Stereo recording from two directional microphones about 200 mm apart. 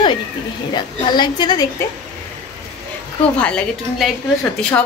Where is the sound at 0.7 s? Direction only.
20° left (ahead or behind).